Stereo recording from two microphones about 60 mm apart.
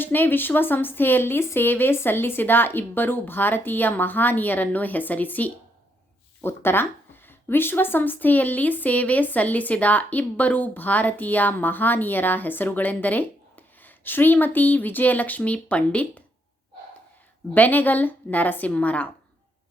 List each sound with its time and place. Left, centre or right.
0.0 s speech: left
17.5 s speech: left